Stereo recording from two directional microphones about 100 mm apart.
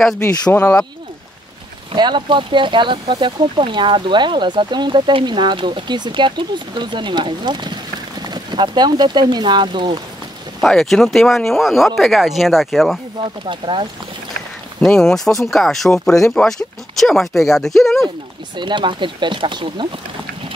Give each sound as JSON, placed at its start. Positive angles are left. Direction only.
{"t": 0.5, "sound": "speech", "side_deg": 20}
{"t": 1.9, "sound": "speech", "side_deg": -50}
{"t": 10.6, "sound": "speech", "side_deg": 5}
{"t": 13.2, "sound": "speech", "side_deg": -60}
{"t": 14.8, "sound": "speech", "side_deg": 5}
{"t": 18.6, "sound": "speech", "side_deg": -50}